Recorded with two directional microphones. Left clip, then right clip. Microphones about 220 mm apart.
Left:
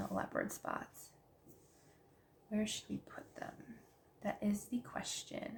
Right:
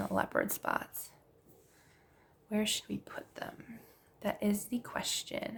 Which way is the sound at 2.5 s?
45° right (ahead or behind).